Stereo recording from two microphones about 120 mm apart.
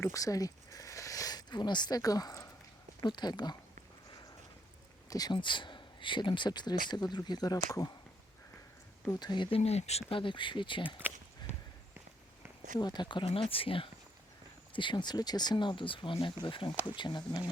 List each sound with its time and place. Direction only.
0.0 s a sound: 30° left (ahead or behind)
3.0 s speech: 35° left (ahead or behind)
5.0 s speech: 30° left (ahead or behind)
9.1 s speech: 40° left (ahead or behind)
9.6 s speech: 60° left (ahead or behind)
10.1 s speech: 45° left (ahead or behind)
11.4 s walk: 40° left (ahead or behind)
12.8 s speech: 35° left (ahead or behind)